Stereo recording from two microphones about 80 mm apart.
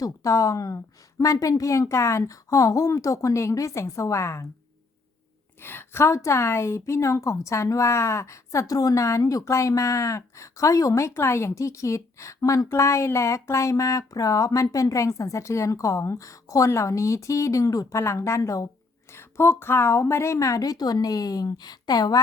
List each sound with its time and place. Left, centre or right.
0.0 s speech: left
5.6 s a woman's voice: left
19.1 s speech: left